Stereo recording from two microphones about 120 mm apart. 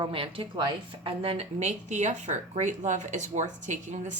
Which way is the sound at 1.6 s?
75° right (ahead or behind).